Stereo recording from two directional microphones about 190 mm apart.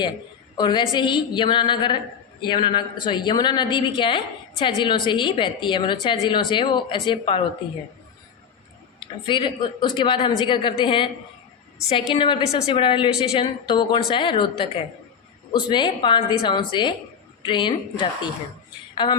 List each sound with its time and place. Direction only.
0.5 s a woman's voice: 25° left (ahead or behind)
9.0 s a woman's voice: 25° left (ahead or behind)
12.1 s a woman's voice: 30° left (ahead or behind)